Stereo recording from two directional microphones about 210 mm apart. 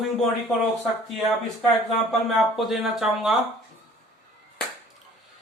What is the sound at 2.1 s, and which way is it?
Speech, centre (ahead or behind).